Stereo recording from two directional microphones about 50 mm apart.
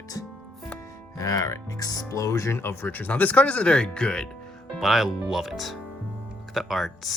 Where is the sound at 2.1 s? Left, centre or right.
Left.